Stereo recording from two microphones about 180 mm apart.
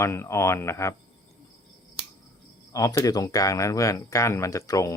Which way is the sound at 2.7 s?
20° left (ahead or behind).